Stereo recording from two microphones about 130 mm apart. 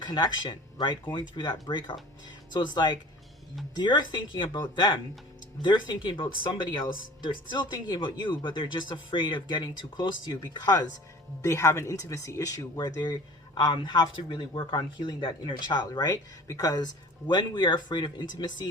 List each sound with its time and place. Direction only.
0.0 s speech: 35° left (ahead or behind)
11.4 s speech: 20° left (ahead or behind)